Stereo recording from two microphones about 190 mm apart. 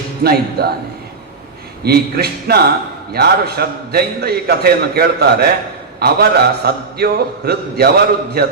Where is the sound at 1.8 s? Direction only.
55° right (ahead or behind).